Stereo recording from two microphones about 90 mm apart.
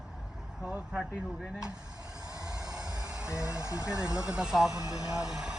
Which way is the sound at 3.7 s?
10° right (ahead or behind).